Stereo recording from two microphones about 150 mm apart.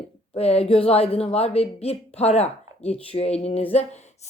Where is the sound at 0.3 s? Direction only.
45° left (ahead or behind).